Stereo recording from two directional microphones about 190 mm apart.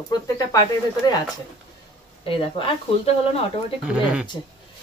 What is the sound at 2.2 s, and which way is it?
Speech, 30° left (ahead or behind).